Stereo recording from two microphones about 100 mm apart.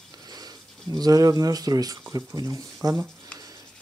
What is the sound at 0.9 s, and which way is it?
Speech, 40° right (ahead or behind).